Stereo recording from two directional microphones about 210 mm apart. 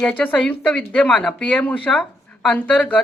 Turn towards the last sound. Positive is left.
turn(degrees=5)  # may be behind; listen again after turning